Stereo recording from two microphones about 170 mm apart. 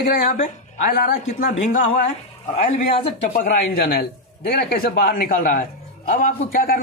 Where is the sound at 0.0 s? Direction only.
55° left (ahead or behind).